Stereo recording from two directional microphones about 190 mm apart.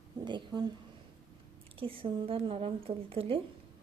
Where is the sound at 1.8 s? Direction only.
30° right (ahead or behind).